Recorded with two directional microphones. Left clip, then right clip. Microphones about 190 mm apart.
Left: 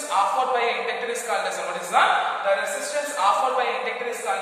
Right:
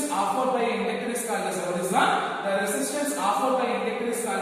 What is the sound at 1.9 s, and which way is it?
Speech, 15° left (ahead or behind).